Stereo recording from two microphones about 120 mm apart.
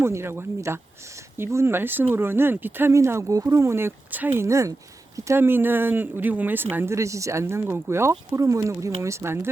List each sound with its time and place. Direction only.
0.0 s speech: 20° right (ahead or behind)